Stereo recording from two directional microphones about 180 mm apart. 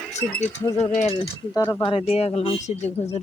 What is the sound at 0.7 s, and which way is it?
Speech, 40° left (ahead or behind).